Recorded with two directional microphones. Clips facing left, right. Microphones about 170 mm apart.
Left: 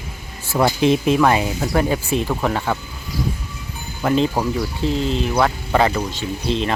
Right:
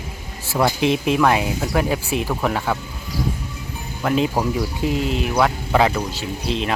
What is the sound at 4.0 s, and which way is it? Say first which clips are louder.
Speech: left 1 dB; centre (ahead or behind).